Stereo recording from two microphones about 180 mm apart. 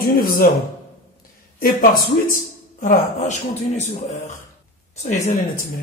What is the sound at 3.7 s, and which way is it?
Speech, 40° left (ahead or behind).